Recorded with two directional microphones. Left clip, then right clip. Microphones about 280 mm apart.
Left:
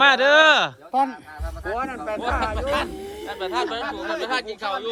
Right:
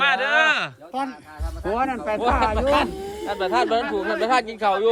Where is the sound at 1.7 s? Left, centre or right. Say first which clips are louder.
Right 5 dB; right.